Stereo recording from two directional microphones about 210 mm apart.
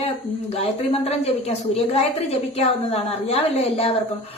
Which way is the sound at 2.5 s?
30° left (ahead or behind).